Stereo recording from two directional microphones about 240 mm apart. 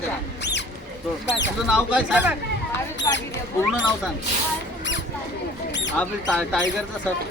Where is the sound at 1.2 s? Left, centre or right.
Left.